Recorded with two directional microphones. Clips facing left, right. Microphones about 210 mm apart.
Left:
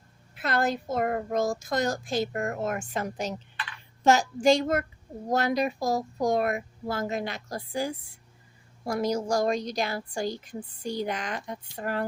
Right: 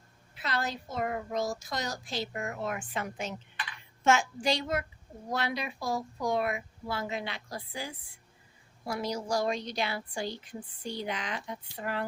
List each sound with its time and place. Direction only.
0.3 s a woman's voice: 50° left (ahead or behind)